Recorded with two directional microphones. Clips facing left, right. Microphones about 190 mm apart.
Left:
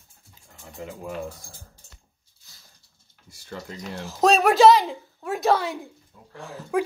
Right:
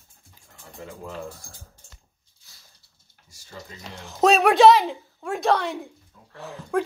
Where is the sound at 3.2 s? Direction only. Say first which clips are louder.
Left 5 dB; 60° left (ahead or behind).